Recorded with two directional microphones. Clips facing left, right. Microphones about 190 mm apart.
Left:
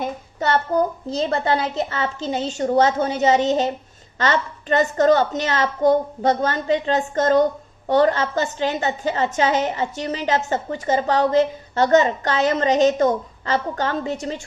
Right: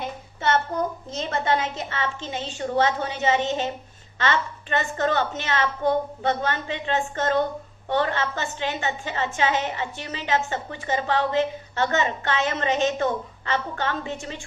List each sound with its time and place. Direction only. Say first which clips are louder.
0.0 s a woman's voice: left 3 dB; 35° left (ahead or behind)